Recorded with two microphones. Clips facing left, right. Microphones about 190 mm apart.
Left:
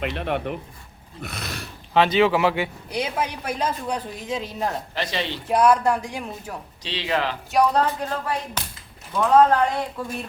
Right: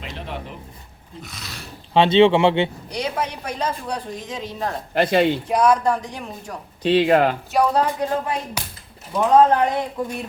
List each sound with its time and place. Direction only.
0.0 s a man's voice: 65° left (ahead or behind)
1.9 s speech: 25° right (ahead or behind)
2.9 s speech: 5° left (ahead or behind)
4.9 s speech: 55° right (ahead or behind)
5.5 s speech: 5° left (ahead or behind)
6.8 s speech: 55° right (ahead or behind)
7.5 s speech: 5° right (ahead or behind); by 10.2 s 20° right (ahead or behind)